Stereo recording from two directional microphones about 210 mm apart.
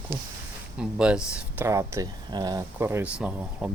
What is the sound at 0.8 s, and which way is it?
Speech, 5° right (ahead or behind).